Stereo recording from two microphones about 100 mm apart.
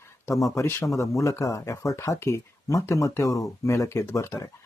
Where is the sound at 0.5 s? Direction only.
30° left (ahead or behind).